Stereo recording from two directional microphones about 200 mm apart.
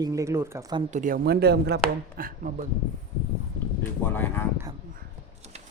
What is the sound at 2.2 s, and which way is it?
Speech, 45° right (ahead or behind).